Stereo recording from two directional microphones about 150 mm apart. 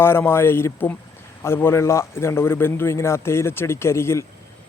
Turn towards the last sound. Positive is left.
turn(degrees=15)  # may be behind; listen again after turning